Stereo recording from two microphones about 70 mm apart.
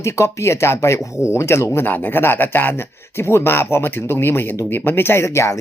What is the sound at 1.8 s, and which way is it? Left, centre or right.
Speech, left.